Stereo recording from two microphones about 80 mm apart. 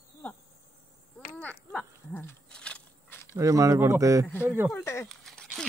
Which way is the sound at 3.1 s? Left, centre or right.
Left.